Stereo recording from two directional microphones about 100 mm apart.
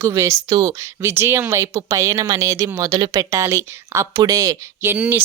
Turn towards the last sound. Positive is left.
turn(degrees=-10)  # may be behind; listen again after turning